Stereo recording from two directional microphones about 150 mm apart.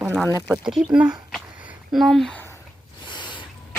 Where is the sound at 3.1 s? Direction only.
30° left (ahead or behind).